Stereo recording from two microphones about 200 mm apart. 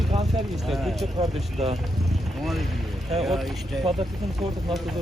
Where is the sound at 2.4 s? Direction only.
Centre (ahead or behind).